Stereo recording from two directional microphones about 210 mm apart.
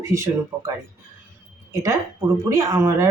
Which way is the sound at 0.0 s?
15° right (ahead or behind).